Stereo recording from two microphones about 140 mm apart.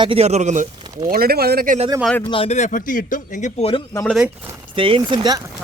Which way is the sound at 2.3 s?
45° left (ahead or behind).